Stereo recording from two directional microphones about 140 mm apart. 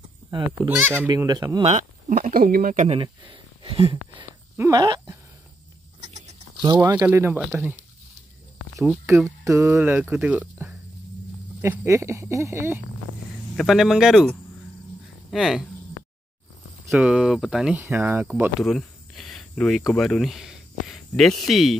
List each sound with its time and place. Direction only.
0.8 s speech: 15° right (ahead or behind)
1.1 s speech: 25° right (ahead or behind)
1.6 s speech: 50° right (ahead or behind)
2.0 s speech: 80° right
2.9 s speech: 35° right (ahead or behind)
4.6 s speech: 25° right (ahead or behind)
6.0 s a sound: 55° right (ahead or behind)
6.8 s speech: 15° right (ahead or behind)
9.1 s speech: 20° right (ahead or behind)
13.6 s speech: centre (ahead or behind)
15.3 s speech: centre (ahead or behind)
16.9 s speech: 5° right (ahead or behind)
17.7 s speech: 20° right (ahead or behind)
18.3 s speech: centre (ahead or behind)